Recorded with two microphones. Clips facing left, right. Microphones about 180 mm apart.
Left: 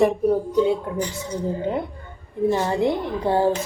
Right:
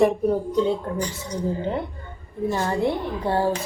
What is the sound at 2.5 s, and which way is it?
A woman's voice, 20° left (ahead or behind).